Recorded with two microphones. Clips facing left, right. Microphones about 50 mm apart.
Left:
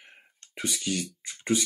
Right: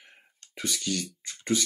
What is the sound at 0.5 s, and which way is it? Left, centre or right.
Speech, centre.